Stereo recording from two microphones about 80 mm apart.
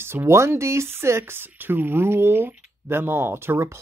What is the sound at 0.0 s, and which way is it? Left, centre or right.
Speech, right.